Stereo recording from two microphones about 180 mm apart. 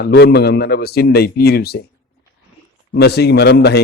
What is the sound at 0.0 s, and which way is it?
A man's voice, 65° left (ahead or behind).